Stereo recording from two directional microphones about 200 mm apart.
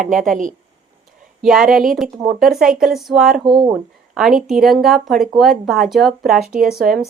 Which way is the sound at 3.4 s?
20° right (ahead or behind).